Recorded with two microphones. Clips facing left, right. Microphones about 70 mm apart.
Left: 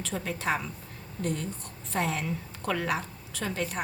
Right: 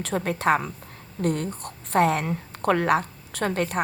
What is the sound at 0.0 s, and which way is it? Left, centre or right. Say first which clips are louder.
A woman's voice: right 8 dB; right.